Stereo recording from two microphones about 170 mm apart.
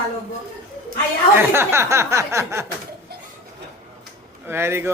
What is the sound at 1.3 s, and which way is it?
Speech, 15° right (ahead or behind).